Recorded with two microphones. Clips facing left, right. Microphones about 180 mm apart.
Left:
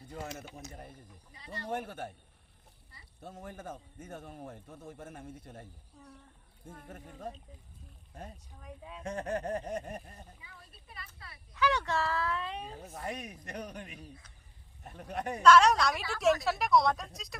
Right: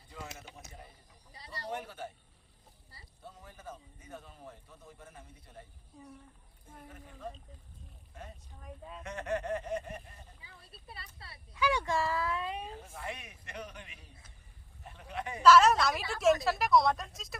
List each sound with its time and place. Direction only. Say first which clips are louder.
0.1 s a man's voice: left 5 dB; 45° left (ahead or behind)
1.3 s speech: left 1 dB; 35° right (ahead or behind)
1.7 s a man's voice: left 4 dB; 55° left (ahead or behind)
3.2 s a man's voice: left 7 dB; 50° left (ahead or behind)
5.9 s speech: right 4 dB; 15° right (ahead or behind)
6.8 s a man's voice: left 1 dB; 45° left (ahead or behind)
8.6 s a woman's voice: even; centre (ahead or behind)
9.0 s speech: left 1 dB; 35° left (ahead or behind)
10.4 s speech: right 2 dB; 30° right (ahead or behind)
11.5 s speech: even; 10° right (ahead or behind)
12.7 s a man's voice: left 3 dB; 45° left (ahead or behind)
15.4 s a woman's voice: even; 5° right (ahead or behind)